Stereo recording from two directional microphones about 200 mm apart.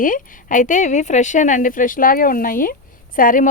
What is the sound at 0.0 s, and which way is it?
Speech, 45° left (ahead or behind).